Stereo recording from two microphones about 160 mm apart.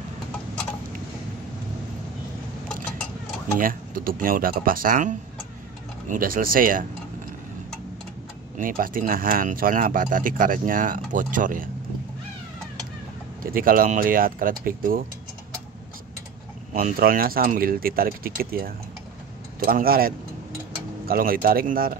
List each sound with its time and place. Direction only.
3.5 s speech: 60° right (ahead or behind)
8.5 s speech: 60° right (ahead or behind)
13.4 s speech: 65° right (ahead or behind)
16.7 s speech: 60° right (ahead or behind)